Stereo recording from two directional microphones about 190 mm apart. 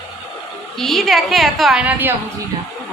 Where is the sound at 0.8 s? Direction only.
Centre (ahead or behind).